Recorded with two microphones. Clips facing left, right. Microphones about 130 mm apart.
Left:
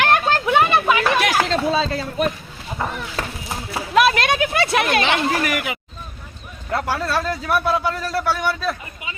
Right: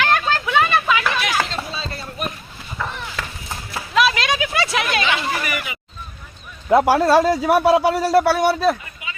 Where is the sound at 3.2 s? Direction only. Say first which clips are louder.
Left 4 dB; 35° left (ahead or behind).